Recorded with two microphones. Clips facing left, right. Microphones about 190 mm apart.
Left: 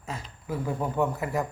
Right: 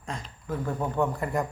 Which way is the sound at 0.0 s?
5° left (ahead or behind).